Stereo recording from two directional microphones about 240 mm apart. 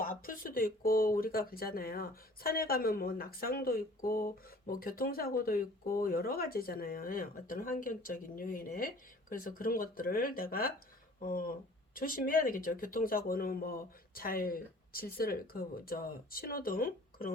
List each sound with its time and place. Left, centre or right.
0.0 s speech: left